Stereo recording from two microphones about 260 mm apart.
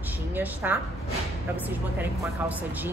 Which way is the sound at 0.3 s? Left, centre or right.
Centre.